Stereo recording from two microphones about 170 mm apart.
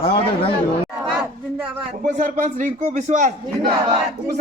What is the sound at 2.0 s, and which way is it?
A man's voice, 45° right (ahead or behind).